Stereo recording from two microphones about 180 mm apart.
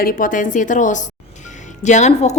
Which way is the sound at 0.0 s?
50° left (ahead or behind).